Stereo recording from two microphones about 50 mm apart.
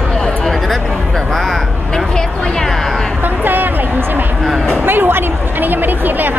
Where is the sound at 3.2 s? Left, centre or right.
Right.